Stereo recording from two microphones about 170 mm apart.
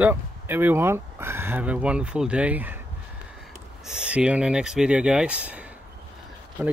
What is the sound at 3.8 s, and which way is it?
Speech, 5° right (ahead or behind).